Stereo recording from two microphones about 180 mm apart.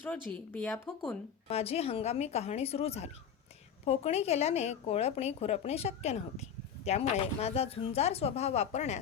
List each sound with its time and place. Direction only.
0.0 s speech: 5° left (ahead or behind)
1.5 s a woman's voice: 35° left (ahead or behind)